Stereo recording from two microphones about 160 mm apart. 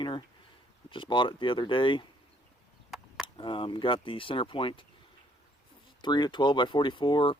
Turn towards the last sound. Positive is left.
turn(degrees=30)  # may be behind; listen again after turning